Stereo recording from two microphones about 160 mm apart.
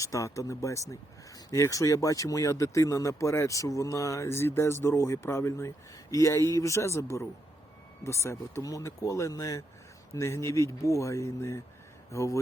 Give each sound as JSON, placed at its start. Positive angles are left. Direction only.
{"t": 0.0, "sound": "speech", "side_deg": 20}